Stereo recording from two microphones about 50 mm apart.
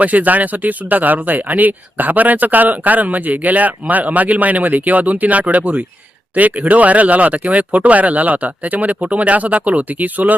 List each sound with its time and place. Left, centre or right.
0.0 s speech: right